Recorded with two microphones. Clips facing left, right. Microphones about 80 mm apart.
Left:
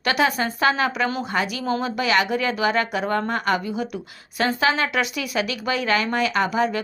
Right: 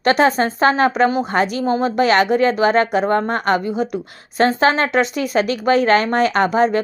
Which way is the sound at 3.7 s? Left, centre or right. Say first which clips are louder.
Right 6 dB; right.